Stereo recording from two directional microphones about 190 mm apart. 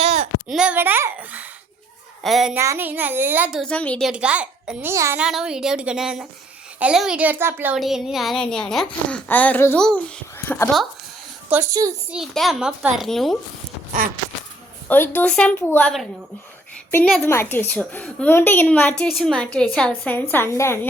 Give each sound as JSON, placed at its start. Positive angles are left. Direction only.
{"t": 0.0, "sound": "a sound", "side_deg": -40}
{"t": 0.5, "sound": "a child's voice", "side_deg": -5}
{"t": 2.6, "sound": "a child's voice", "side_deg": -10}
{"t": 4.1, "sound": "a child's voice", "side_deg": -5}
{"t": 5.2, "sound": "a child's voice", "side_deg": -5}
{"t": 11.4, "sound": "speech", "side_deg": -15}
{"t": 12.1, "sound": "speech", "side_deg": 0}
{"t": 14.8, "sound": "a woman's voice", "side_deg": 10}